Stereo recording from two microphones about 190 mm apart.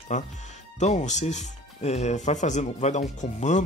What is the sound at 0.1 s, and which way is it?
Speech, 40° left (ahead or behind).